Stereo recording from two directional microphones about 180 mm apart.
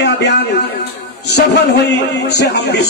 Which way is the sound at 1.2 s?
70° left (ahead or behind).